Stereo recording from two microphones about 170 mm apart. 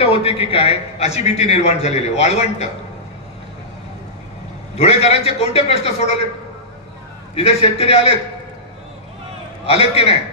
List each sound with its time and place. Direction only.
0.0 s a man's voice: 35° left (ahead or behind)
4.7 s a man's voice: 40° left (ahead or behind)
7.3 s a man's voice: 35° left (ahead or behind)
9.7 s a man's voice: 35° left (ahead or behind)